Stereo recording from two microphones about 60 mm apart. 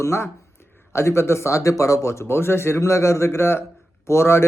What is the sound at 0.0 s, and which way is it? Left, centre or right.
Speech, left.